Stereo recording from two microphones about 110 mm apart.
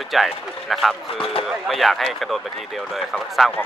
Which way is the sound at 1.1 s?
60° left (ahead or behind).